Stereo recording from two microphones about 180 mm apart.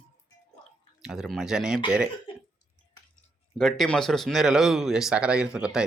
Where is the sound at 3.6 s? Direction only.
Centre (ahead or behind).